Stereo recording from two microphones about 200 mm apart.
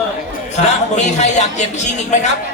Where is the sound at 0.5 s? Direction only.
35° left (ahead or behind).